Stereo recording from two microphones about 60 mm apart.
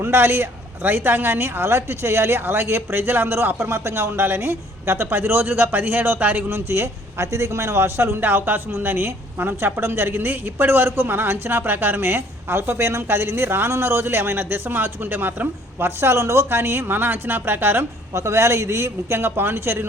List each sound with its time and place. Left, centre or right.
0.0 s a man's voice: right
6.5 s a man's voice: right